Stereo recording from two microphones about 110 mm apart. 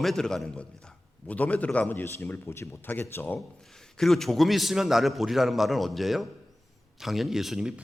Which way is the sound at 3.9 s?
5° left (ahead or behind).